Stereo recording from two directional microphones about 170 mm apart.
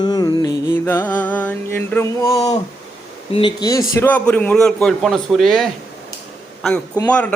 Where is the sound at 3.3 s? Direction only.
30° left (ahead or behind).